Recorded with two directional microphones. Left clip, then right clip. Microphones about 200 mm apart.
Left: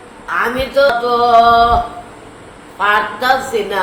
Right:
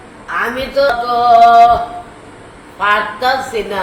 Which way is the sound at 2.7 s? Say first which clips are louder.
Even; 15° left (ahead or behind).